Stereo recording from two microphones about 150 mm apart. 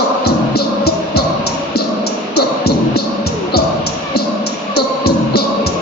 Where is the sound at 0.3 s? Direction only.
90° left.